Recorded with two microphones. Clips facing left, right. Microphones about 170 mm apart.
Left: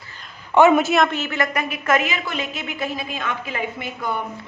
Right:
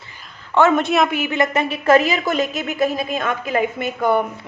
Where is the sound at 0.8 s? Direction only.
Centre (ahead or behind).